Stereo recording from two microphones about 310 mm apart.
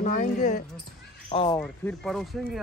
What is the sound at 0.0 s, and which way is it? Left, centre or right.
Speech, left.